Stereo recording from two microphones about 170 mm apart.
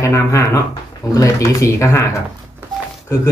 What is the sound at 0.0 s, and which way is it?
Speech, 15° left (ahead or behind).